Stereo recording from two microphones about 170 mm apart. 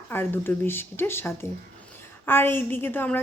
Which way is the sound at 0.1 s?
10° left (ahead or behind).